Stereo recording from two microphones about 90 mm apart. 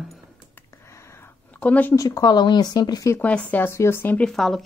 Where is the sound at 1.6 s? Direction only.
15° left (ahead or behind).